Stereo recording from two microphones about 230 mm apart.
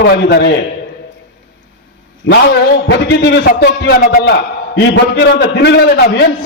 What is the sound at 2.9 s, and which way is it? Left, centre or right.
A man's voice, left.